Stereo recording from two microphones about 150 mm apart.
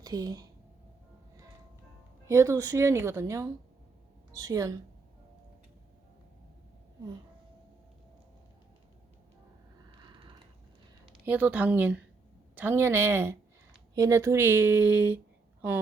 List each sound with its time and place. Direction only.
0.0 s speech: 25° right (ahead or behind)
2.2 s a woman's voice: 20° right (ahead or behind)
11.3 s speech: 10° right (ahead or behind)